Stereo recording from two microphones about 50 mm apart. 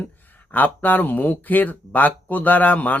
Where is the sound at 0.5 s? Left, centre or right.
Left.